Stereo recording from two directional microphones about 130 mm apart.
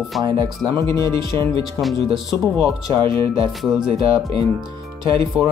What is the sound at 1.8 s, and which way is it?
Speech, centre (ahead or behind).